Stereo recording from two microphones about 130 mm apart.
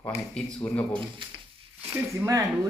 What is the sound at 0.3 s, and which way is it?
Speech, 10° left (ahead or behind).